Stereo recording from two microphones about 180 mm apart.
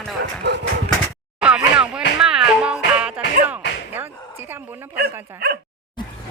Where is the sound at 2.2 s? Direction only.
5° right (ahead or behind).